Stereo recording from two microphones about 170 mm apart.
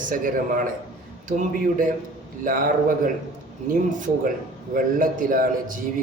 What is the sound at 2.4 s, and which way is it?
A man's voice, 55° right (ahead or behind).